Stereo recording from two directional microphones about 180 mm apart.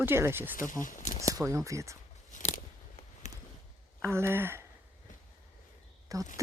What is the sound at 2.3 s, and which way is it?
Scissors, 40° left (ahead or behind).